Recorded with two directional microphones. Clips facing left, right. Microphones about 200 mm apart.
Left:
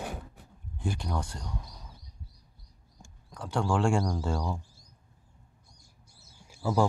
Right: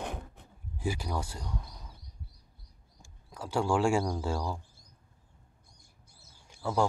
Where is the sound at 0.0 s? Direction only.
5° left (ahead or behind).